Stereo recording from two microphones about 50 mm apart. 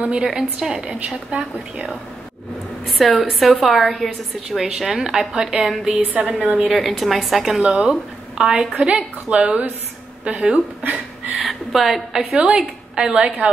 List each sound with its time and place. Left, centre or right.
0.0 s a woman's voice: centre
0.8 s a woman's voice: right
3.0 s a woman's voice: centre
5.7 s a woman's voice: centre; by 10.6 s right
10.8 s a sound: right
11.3 s a woman's voice: centre
12.4 s a woman's voice: centre